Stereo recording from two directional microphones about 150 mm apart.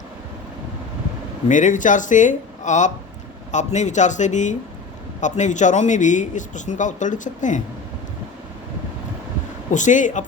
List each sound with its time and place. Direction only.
1.5 s speech: 55° left (ahead or behind)
9.7 s speech: 55° left (ahead or behind)